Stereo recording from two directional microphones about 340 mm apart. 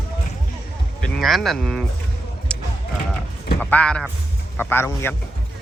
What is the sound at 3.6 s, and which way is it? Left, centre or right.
A man's voice, centre.